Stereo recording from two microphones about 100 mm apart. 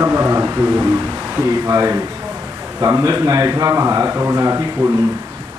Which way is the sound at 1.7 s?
30° right (ahead or behind).